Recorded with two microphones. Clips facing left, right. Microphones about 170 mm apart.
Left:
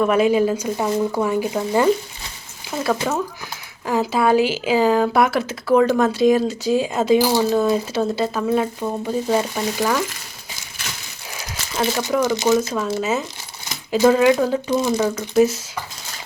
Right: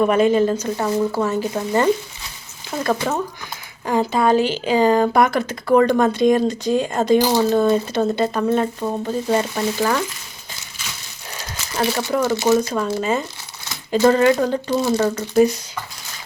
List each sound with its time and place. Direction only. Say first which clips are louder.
0.0 s speech: right 1 dB; 5° left (ahead or behind)
2.7 s speech: even; centre (ahead or behind)
11.3 s a sound: right 1 dB; centre (ahead or behind)
12.2 s speech: even; 15° left (ahead or behind)
12.5 s speech: right 1 dB; centre (ahead or behind)